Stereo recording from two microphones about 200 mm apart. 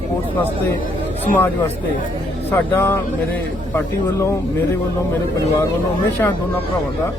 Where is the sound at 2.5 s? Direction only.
10° left (ahead or behind).